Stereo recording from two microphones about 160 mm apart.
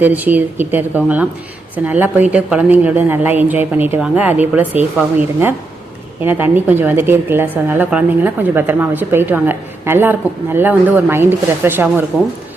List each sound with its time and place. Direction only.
0.0 s a woman's voice: 10° right (ahead or behind)